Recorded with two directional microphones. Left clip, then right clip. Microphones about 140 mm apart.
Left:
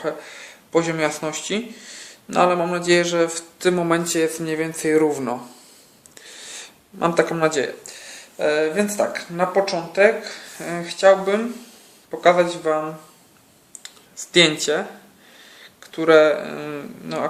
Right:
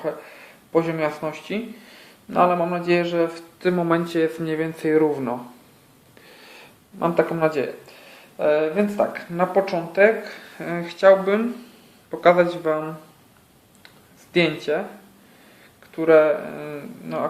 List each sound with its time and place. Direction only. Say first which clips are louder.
0.0 s speech: left 1 dB; 30° left (ahead or behind)
6.2 s a sound: left 7 dB; 25° left (ahead or behind)
7.0 s speech: left 1 dB; 30° left (ahead or behind)
8.4 s speech: even; 20° left (ahead or behind)
14.3 s speech: left 4 dB; 35° left (ahead or behind)
15.9 s speech: left 2 dB; 40° left (ahead or behind)